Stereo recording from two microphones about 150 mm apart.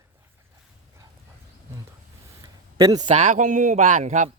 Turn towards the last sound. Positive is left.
turn(degrees=-55)  # may be behind; listen again after turning